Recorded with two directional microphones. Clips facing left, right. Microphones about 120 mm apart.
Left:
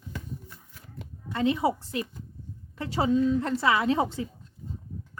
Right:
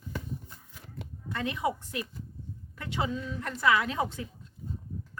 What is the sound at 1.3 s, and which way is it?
A woman's voice, 25° left (ahead or behind).